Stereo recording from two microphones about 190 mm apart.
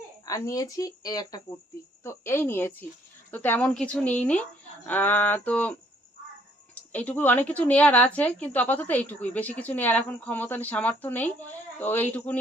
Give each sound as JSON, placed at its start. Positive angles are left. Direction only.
{"t": 0.3, "sound": "speech", "side_deg": 15}
{"t": 6.7, "sound": "speech", "side_deg": 10}